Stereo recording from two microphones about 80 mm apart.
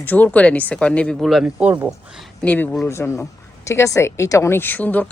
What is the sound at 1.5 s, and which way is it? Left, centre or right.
Speech, centre.